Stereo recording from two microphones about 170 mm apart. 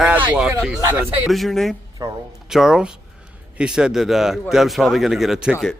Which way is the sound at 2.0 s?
20° right (ahead or behind).